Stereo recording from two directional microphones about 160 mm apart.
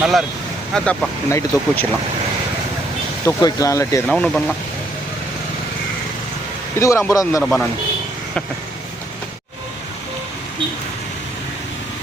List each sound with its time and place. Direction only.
0.0 s speech: 5° right (ahead or behind)
1.3 s speech: 15° left (ahead or behind)
3.2 s speech: 20° left (ahead or behind)
4.1 s speech: centre (ahead or behind)
6.7 s speech: 15° left (ahead or behind)
7.4 s speech: 5° left (ahead or behind)